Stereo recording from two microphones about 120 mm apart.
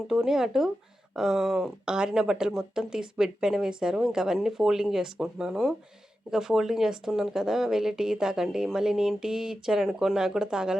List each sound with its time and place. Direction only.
0.1 s speech: 5° right (ahead or behind)